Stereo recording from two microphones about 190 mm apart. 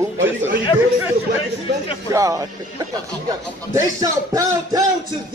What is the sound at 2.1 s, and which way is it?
Speech, 15° right (ahead or behind).